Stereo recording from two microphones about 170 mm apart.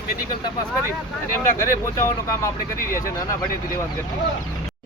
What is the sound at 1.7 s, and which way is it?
Speech, 20° left (ahead or behind).